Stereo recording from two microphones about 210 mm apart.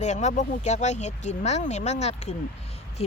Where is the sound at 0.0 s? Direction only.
35° left (ahead or behind).